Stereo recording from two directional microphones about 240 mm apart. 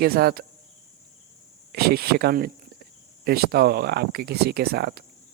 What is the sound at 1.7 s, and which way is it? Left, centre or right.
Speech, right.